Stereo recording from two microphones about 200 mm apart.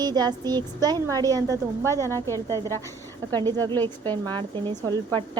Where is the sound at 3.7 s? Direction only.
10° left (ahead or behind).